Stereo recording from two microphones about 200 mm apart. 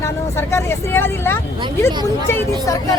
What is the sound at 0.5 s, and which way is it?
Speech, 10° left (ahead or behind).